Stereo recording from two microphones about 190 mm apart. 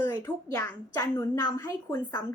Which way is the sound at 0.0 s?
15° left (ahead or behind).